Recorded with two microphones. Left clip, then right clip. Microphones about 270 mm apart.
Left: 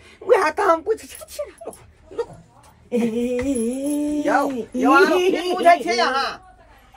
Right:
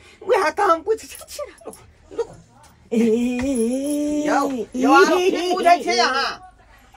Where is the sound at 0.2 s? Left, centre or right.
Centre.